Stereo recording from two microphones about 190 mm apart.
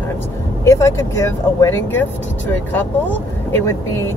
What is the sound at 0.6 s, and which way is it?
Speech, 15° left (ahead or behind).